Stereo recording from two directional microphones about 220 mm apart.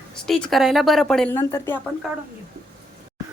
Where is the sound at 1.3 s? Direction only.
15° left (ahead or behind).